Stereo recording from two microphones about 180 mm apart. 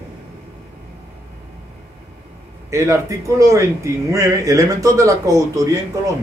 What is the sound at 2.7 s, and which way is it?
Speech, 15° right (ahead or behind).